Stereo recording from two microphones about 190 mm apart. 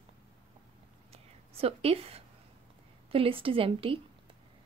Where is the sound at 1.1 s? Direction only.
30° right (ahead or behind).